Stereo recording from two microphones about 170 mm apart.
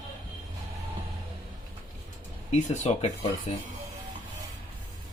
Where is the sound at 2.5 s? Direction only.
40° left (ahead or behind).